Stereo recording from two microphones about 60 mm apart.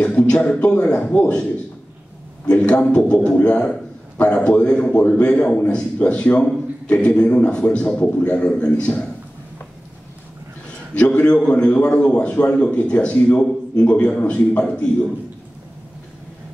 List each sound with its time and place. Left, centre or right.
0.0 s a man's voice: centre
2.4 s a man's voice: centre
11.0 s a man's voice: left